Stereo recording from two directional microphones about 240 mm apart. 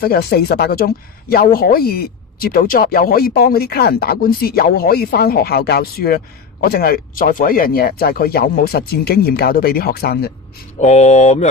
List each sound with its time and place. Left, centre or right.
0.0 s speech: left
10.8 s speech: left